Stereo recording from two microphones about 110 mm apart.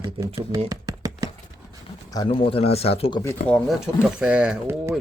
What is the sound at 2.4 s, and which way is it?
Speech, 60° left (ahead or behind).